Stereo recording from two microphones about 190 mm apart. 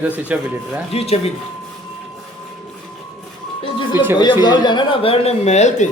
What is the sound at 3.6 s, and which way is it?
Music, 25° left (ahead or behind).